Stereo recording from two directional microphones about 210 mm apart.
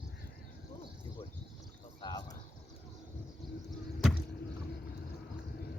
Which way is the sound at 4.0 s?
Centre (ahead or behind).